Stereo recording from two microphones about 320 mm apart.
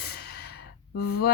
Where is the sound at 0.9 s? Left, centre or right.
Left.